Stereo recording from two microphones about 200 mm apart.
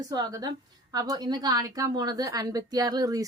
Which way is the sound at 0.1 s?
20° right (ahead or behind).